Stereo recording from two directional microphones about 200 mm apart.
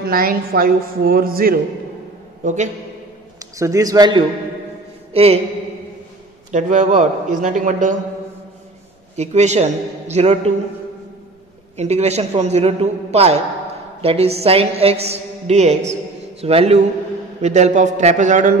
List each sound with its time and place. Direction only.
0.0 s speech: 45° right (ahead or behind)
2.4 s a woman's voice: 35° right (ahead or behind)
3.5 s a man's voice: 15° right (ahead or behind)
5.1 s a sound: 30° right (ahead or behind)
6.5 s a woman's voice: 40° right (ahead or behind)
9.1 s a woman's voice: 35° right (ahead or behind)
11.7 s a woman's voice: 35° right (ahead or behind)